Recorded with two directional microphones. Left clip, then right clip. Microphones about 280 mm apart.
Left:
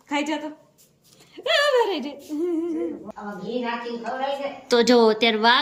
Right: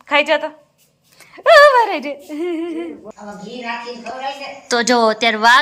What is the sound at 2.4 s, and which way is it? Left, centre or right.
Speech, centre.